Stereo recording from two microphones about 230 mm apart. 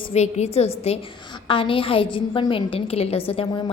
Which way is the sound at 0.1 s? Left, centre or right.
Left.